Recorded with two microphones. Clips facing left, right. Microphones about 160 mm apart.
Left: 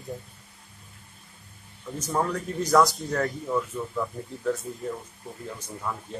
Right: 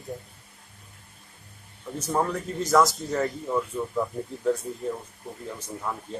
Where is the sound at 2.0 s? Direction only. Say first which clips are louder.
Right 1 dB; 10° right (ahead or behind).